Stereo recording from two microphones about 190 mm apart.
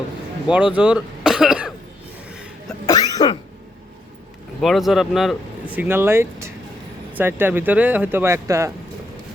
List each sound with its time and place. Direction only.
0.4 s speech: 5° right (ahead or behind)
2.3 s throat clearing: 5° right (ahead or behind)
2.8 s cough: 20° left (ahead or behind)
4.6 s speech: centre (ahead or behind)